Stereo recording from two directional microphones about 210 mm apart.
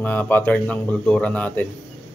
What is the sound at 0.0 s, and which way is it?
Speech, 10° left (ahead or behind).